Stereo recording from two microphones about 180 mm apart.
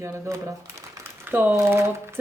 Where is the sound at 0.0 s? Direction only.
15° right (ahead or behind).